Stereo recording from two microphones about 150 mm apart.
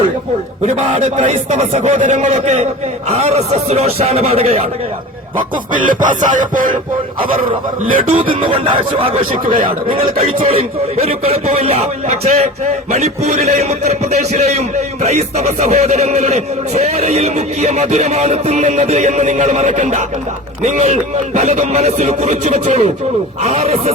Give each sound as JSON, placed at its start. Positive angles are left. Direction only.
{"t": 0.6, "sound": "speech", "side_deg": -50}
{"t": 5.4, "sound": "music", "side_deg": -60}
{"t": 7.9, "sound": "music", "side_deg": -65}
{"t": 8.4, "sound": "speech", "side_deg": -40}